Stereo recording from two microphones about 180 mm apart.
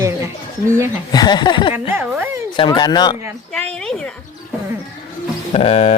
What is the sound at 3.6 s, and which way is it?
Speech, 5° left (ahead or behind).